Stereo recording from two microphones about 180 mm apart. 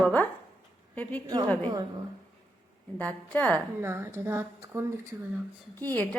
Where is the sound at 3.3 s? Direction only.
10° left (ahead or behind).